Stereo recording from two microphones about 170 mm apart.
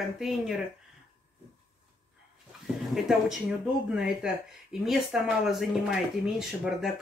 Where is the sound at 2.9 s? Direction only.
Centre (ahead or behind).